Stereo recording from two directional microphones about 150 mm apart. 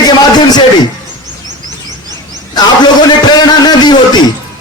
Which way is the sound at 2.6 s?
30° left (ahead or behind).